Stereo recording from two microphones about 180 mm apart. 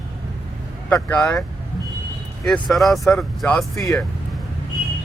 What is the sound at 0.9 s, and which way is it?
Speech, 10° left (ahead or behind).